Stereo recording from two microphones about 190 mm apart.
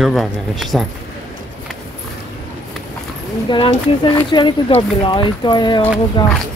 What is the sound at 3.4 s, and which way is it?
Speech, 25° left (ahead or behind).